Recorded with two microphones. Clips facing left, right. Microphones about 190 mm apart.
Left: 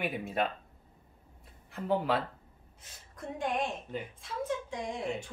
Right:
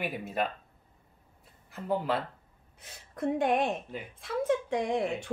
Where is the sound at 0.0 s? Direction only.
Centre (ahead or behind).